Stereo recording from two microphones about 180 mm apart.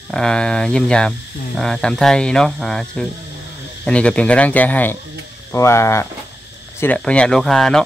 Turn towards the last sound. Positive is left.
turn(degrees=0)  # may be behind; listen again after turning